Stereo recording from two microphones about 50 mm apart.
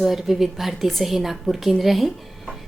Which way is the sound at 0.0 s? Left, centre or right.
Centre.